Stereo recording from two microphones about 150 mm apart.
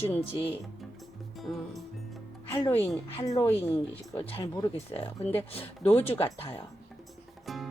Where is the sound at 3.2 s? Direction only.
20° left (ahead or behind).